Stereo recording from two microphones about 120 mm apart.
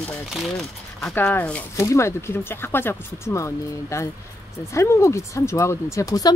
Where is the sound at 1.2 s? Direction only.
15° left (ahead or behind).